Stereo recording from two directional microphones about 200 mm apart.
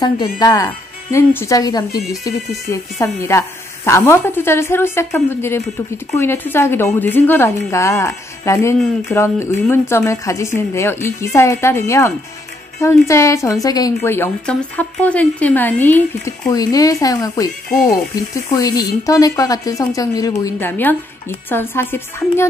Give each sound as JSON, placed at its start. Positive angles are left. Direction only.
{"t": 0.4, "sound": "a woman's voice", "side_deg": 20}